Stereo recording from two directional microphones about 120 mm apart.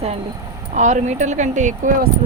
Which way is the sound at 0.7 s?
85° right.